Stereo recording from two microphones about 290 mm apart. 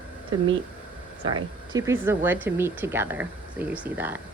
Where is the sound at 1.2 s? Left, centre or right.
Right.